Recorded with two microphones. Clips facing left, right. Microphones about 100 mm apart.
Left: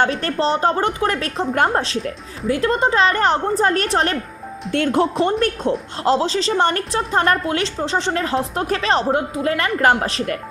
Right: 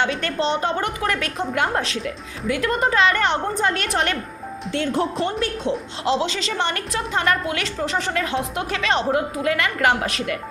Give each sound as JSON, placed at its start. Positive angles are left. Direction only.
{"t": 0.0, "sound": "a woman's voice", "side_deg": 35}
{"t": 4.7, "sound": "speech", "side_deg": 55}
{"t": 6.1, "sound": "a woman's voice", "side_deg": 40}